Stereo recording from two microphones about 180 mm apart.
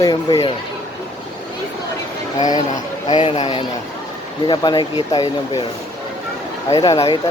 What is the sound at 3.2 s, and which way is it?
Speech, 40° left (ahead or behind).